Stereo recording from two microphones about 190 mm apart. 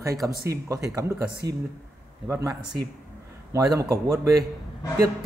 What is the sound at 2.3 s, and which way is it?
A man's voice, 15° right (ahead or behind).